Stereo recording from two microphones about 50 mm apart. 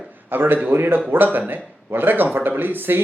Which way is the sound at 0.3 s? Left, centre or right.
Right.